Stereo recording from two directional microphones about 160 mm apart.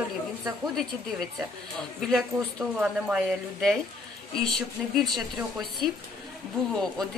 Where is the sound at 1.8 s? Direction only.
Centre (ahead or behind).